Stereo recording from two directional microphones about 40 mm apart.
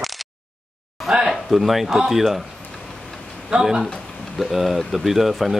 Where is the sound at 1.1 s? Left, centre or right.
Centre.